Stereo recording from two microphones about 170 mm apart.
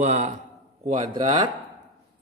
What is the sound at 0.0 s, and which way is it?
A man's voice, 45° right (ahead or behind).